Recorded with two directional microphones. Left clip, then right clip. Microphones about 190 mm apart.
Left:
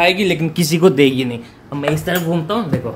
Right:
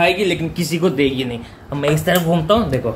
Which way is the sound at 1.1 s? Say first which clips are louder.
Left 2 dB; 20° left (ahead or behind).